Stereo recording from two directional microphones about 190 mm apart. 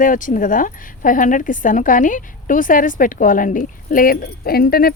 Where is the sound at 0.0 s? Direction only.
45° left (ahead or behind).